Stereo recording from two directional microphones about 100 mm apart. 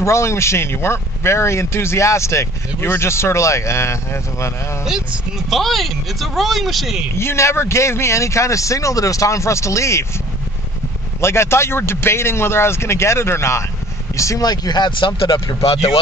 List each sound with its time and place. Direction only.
0.0 s speech: 30° left (ahead or behind)
5.5 s speech: centre (ahead or behind)
7.2 s speech: 25° left (ahead or behind)
11.1 s speech: 25° left (ahead or behind); by 15.5 s 45° left (ahead or behind)